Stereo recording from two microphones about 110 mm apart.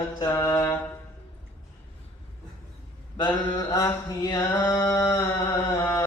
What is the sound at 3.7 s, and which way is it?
Mantra, 30° left (ahead or behind).